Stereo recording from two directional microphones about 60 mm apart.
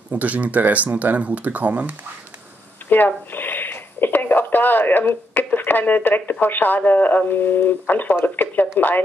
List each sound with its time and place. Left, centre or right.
0.1 s speech: right
2.9 s a sound: left
6.4 s speech: left